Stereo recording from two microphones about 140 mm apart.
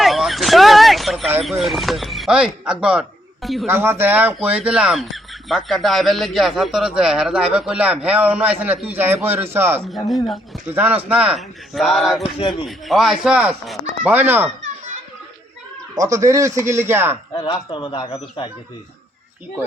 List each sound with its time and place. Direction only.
0.0 s a sound: centre (ahead or behind)
1.5 s speech: centre (ahead or behind)
3.7 s speech: 15° right (ahead or behind)
10.1 s speech: centre (ahead or behind)
10.7 s speech: 10° right (ahead or behind)
16.0 s a man's voice: 20° right (ahead or behind)
17.3 s speech: 30° left (ahead or behind)